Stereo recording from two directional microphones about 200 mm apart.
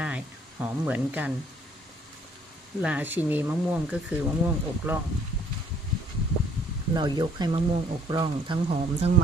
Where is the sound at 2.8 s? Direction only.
5° right (ahead or behind).